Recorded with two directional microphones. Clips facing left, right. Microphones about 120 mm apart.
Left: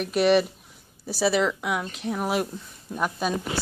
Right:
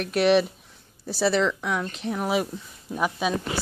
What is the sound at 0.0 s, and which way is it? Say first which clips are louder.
A woman's voice: even; centre (ahead or behind).